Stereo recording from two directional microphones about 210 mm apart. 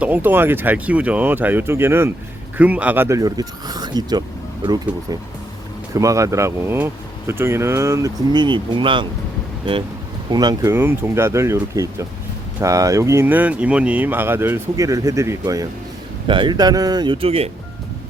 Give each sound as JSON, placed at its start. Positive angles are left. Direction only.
{"t": 0.0, "sound": "speech", "side_deg": -10}
{"t": 5.9, "sound": "speech", "side_deg": -15}
{"t": 10.3, "sound": "speech", "side_deg": -15}